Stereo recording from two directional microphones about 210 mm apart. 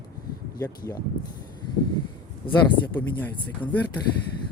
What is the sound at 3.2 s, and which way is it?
Speech, 5° left (ahead or behind).